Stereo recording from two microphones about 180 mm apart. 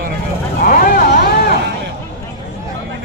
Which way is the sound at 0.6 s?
50° left (ahead or behind).